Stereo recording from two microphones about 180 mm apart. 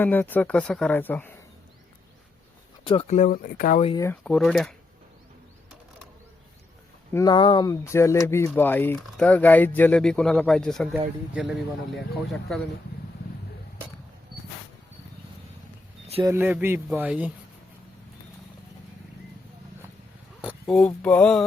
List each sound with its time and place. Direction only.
0.0 s speech: 10° left (ahead or behind)
2.8 s speech: 30° left (ahead or behind); by 3.8 s 50° left (ahead or behind)
3.9 s speech: 15° left (ahead or behind)
4.2 s speech: 5° left (ahead or behind)
7.1 s speech: 20° left (ahead or behind); by 12.6 s centre (ahead or behind)
16.2 s speech: 10° right (ahead or behind)
20.4 s speech: 5° right (ahead or behind)